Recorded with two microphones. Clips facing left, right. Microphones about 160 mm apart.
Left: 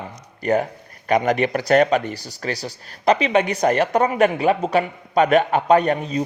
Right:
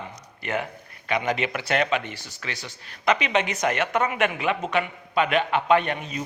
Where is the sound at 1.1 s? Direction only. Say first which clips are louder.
Left 7 dB; 45° left (ahead or behind).